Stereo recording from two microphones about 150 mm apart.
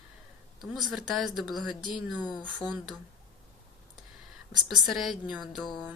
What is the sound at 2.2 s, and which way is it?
Speech, 30° left (ahead or behind).